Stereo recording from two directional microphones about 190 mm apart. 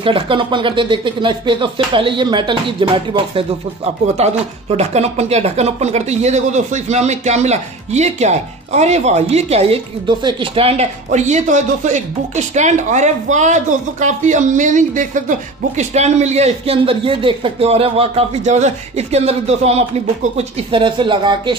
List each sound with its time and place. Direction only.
0.0 s speech: 25° right (ahead or behind)